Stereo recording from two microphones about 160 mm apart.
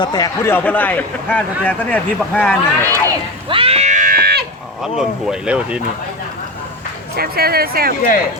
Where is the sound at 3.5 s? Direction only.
35° right (ahead or behind); by 4.4 s 75° right (ahead or behind).